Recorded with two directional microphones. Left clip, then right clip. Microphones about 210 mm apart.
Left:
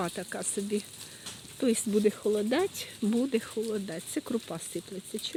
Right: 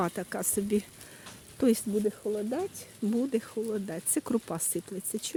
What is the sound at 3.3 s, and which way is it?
Speech, 5° right (ahead or behind).